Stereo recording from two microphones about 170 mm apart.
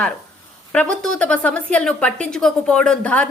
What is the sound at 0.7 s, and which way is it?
A woman's voice, 5° left (ahead or behind).